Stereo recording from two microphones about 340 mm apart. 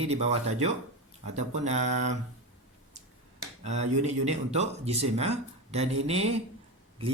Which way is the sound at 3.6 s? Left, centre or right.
Centre.